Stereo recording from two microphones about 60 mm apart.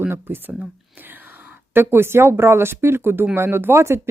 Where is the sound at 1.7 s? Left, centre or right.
Right.